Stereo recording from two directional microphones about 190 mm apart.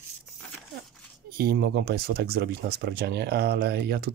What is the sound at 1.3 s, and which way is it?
Speech, 55° right (ahead or behind).